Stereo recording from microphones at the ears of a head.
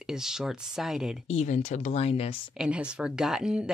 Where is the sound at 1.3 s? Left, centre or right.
Left.